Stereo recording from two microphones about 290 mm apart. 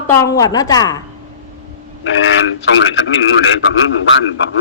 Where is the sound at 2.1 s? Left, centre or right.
Left.